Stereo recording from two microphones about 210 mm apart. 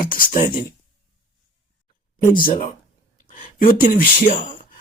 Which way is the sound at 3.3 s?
40° left (ahead or behind).